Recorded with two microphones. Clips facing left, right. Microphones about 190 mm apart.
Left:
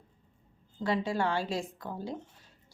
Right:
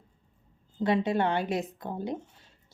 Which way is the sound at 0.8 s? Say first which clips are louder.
Right 4 dB; 20° right (ahead or behind).